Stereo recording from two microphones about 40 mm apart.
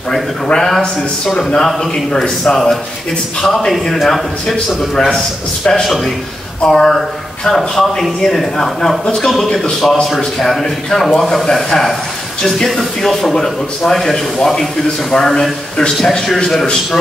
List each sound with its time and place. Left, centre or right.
0.6 s speech: centre
2.2 s speech: centre
3.4 s a man's voice: centre
5.7 s a man's voice: centre